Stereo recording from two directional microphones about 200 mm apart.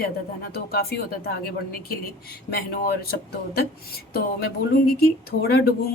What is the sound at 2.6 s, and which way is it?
Speech, 50° left (ahead or behind).